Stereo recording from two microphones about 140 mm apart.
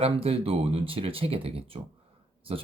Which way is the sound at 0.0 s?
45° right (ahead or behind).